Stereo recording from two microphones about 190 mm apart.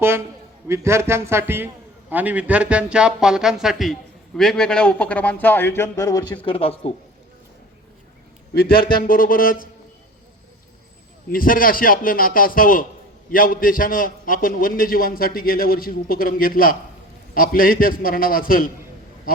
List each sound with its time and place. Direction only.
0.7 s a man's voice: 15° right (ahead or behind); by 6.9 s 30° left (ahead or behind)
8.5 s a man's voice: 50° left (ahead or behind)
11.3 s a man's voice: 50° left (ahead or behind)